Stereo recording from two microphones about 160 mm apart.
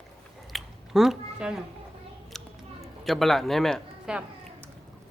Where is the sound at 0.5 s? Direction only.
Centre (ahead or behind).